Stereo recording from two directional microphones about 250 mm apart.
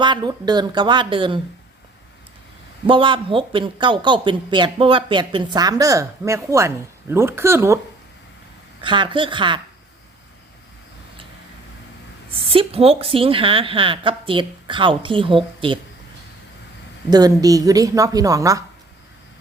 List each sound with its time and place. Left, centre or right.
0.0 s a woman's voice: centre
2.8 s speech: centre
8.8 s speech: centre
12.5 s speech: right
17.1 s a woman's voice: centre